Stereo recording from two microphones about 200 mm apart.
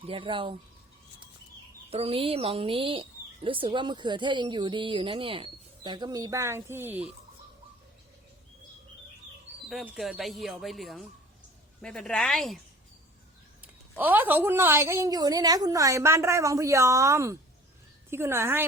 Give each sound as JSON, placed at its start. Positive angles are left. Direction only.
{"t": 0.1, "sound": "speech", "side_deg": -25}
{"t": 1.9, "sound": "speech", "side_deg": -30}
{"t": 9.6, "sound": "speech", "side_deg": 0}
{"t": 13.6, "sound": "a woman's voice", "side_deg": -10}